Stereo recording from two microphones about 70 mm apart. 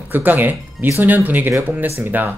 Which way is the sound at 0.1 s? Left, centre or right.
Right.